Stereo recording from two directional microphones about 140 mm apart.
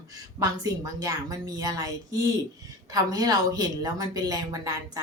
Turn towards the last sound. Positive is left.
turn(degrees=-25)  # may be behind; listen again after turning